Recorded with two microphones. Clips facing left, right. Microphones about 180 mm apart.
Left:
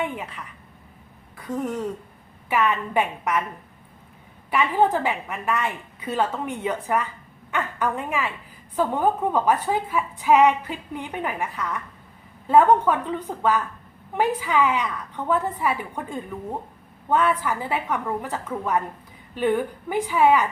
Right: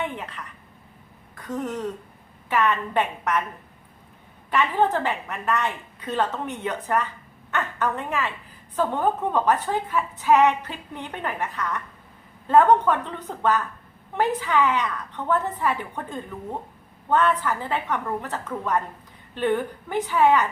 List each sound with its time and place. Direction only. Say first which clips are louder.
0.2 s a woman's voice: left 1 dB; 10° left (ahead or behind)
4.5 s a woman's voice: left 1 dB; 10° left (ahead or behind)